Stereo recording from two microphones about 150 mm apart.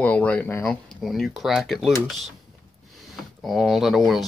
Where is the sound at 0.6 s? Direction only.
Centre (ahead or behind).